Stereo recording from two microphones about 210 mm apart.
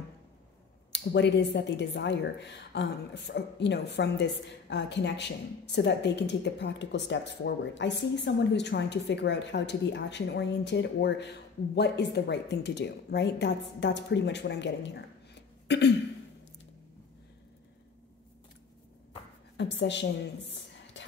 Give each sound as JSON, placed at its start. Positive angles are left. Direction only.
{"t": 0.9, "sound": "speech", "side_deg": 55}
{"t": 19.5, "sound": "a woman's voice", "side_deg": 55}
{"t": 20.5, "sound": "a sound", "side_deg": 60}